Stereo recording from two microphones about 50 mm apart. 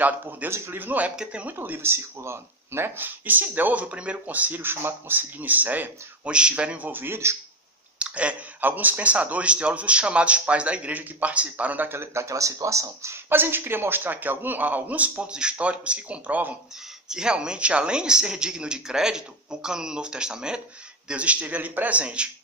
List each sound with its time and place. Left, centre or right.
0.0 s speech: right
0.5 s a man's voice: right
0.7 s speech: right
1.1 s speech: centre
1.5 s speech: right
4.6 s speech: right
6.3 s speech: right
6.9 s speech: right
8.0 s speech: right
12.0 s speech: right
13.3 s speech: right
17.1 s speech: centre
21.1 s speech: right